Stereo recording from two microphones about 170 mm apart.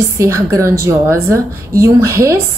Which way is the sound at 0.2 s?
20° right (ahead or behind).